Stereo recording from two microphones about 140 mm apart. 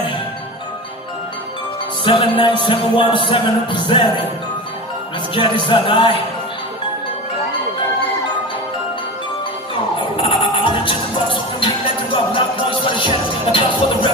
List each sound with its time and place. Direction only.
2.0 s music: 35° left (ahead or behind)
5.3 s music: 35° left (ahead or behind)
9.9 s music: 35° left (ahead or behind)